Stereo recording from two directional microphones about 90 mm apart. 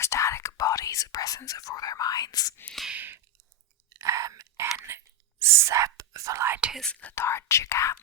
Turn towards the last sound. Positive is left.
turn(degrees=35)  # may be behind; listen again after turning